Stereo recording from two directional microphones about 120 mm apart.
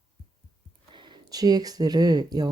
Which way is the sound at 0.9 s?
40° right (ahead or behind).